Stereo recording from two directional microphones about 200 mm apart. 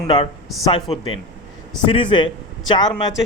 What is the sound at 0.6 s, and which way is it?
A man's voice, 25° left (ahead or behind).